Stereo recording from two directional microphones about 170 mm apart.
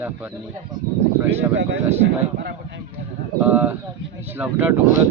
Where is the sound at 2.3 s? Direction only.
90° right.